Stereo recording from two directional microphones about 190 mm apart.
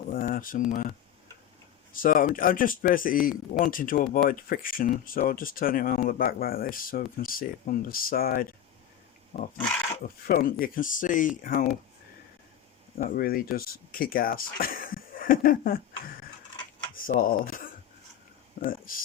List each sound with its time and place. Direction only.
0.1 s speech: 45° left (ahead or behind)
13.1 s speech: 50° left (ahead or behind)
16.9 s a sound: 50° left (ahead or behind)
18.6 s speech: 50° left (ahead or behind)